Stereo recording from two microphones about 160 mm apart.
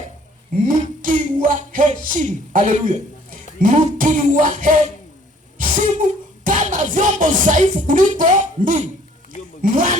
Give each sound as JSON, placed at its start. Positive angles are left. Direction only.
{"t": 0.7, "sound": "music", "side_deg": -55}
{"t": 3.6, "sound": "a sound", "side_deg": -55}
{"t": 5.5, "sound": "music", "side_deg": -55}
{"t": 9.6, "sound": "speech", "side_deg": -55}